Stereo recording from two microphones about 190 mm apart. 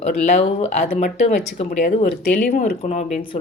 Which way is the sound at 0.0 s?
35° left (ahead or behind).